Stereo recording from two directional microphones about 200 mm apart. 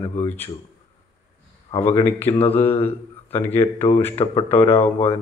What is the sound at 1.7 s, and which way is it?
Speech, 30° left (ahead or behind).